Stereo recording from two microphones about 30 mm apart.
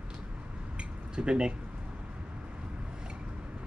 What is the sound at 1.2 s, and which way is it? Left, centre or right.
Speech, right.